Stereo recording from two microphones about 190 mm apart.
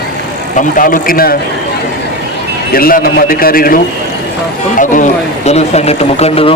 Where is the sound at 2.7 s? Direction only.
50° left (ahead or behind).